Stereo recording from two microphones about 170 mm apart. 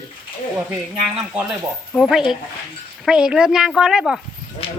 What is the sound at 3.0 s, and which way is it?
A woman's voice, 5° right (ahead or behind).